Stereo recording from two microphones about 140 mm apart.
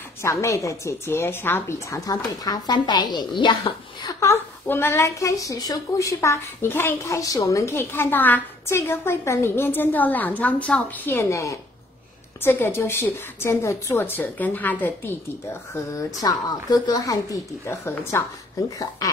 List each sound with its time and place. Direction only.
0.2 s speech: 20° left (ahead or behind)
4.2 s speech: 20° left (ahead or behind)
15.7 s speech: 25° left (ahead or behind)